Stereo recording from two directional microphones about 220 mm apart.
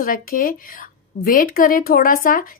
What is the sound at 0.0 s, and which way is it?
A woman's voice, 40° left (ahead or behind).